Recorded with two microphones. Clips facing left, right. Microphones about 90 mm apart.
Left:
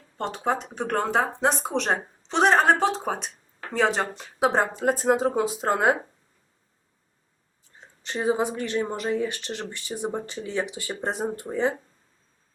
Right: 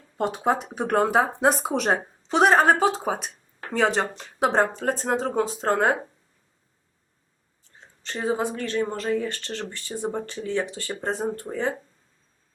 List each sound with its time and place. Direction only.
0.2 s speech: 5° right (ahead or behind)
8.0 s speech: 15° left (ahead or behind)